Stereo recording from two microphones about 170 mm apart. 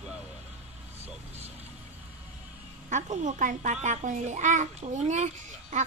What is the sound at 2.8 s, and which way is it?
A child's voice, 45° right (ahead or behind).